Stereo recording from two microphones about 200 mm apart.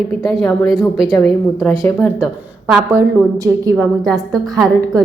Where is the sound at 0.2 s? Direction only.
Centre (ahead or behind).